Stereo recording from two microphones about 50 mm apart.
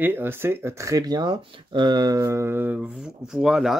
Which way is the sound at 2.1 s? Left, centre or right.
Right.